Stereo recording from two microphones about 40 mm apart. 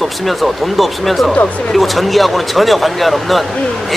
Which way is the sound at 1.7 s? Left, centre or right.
Centre.